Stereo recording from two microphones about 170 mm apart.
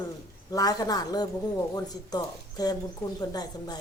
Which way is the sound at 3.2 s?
25° left (ahead or behind).